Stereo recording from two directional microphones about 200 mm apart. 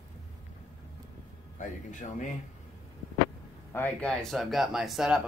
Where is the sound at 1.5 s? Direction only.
40° left (ahead or behind).